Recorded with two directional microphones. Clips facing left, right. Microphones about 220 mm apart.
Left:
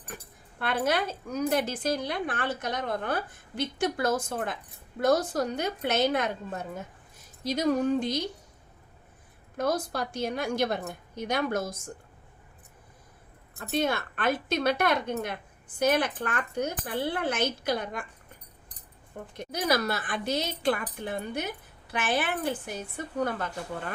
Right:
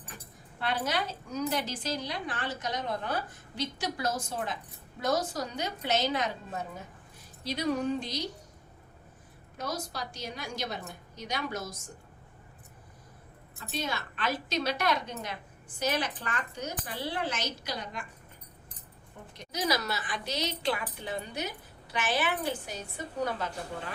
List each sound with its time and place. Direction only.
0.6 s a woman's voice: 55° left (ahead or behind)
7.4 s a woman's voice: 45° left (ahead or behind)
9.6 s a woman's voice: 55° left (ahead or behind)
13.6 s a woman's voice: 55° left (ahead or behind)
19.4 s a woman's voice: 55° left (ahead or behind)